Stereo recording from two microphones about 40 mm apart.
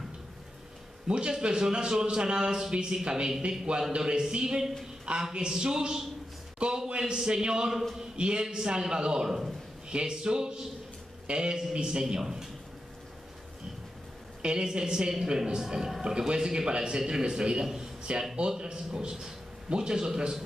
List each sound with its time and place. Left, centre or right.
1.0 s a man's voice: right
14.4 s a man's voice: centre
18.1 s a man's voice: right